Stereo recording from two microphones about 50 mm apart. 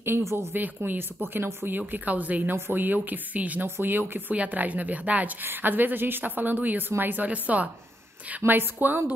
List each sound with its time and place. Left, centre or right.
0.2 s speech: right
0.6 s speech: right
1.8 s speech: right
3.6 s speech: right
4.3 s speech: right
5.4 s speech: right
7.2 s speech: right
8.4 s speech: right